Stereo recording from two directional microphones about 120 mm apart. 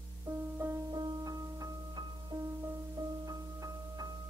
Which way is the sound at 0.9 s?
35° right (ahead or behind).